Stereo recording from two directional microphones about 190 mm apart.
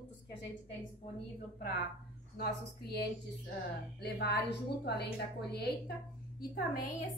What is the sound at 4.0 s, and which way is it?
A woman's voice, 60° left (ahead or behind).